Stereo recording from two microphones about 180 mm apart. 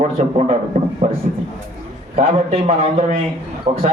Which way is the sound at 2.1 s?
35° right (ahead or behind).